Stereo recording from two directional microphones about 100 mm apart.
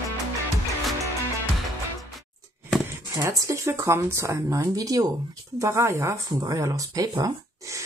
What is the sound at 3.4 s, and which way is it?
Speech, 30° right (ahead or behind).